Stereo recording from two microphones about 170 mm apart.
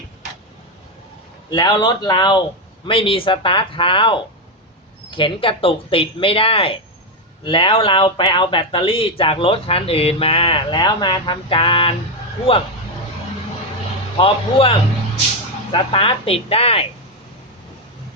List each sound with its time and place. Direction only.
1.5 s speech: 25° left (ahead or behind)
14.2 s speech: 30° left (ahead or behind)